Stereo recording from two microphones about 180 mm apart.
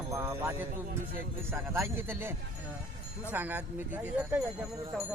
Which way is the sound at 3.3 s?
10° right (ahead or behind).